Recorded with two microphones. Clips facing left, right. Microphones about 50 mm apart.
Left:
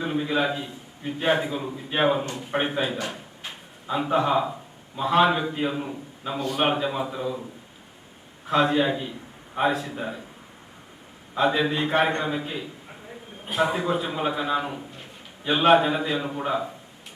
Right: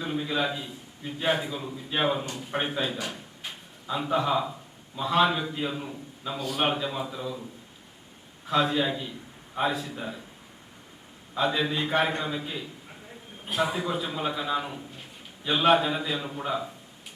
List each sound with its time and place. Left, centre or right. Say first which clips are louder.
0.0 s a man's voice: left 4 dB; centre
6.4 s a man's voice: left 4 dB; centre
8.4 s a man's voice: left 4 dB; centre
9.6 s a man's voice: left 4 dB; left
11.3 s a man's voice: left 4 dB; centre